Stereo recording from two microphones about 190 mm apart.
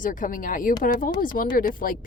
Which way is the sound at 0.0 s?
45° left (ahead or behind).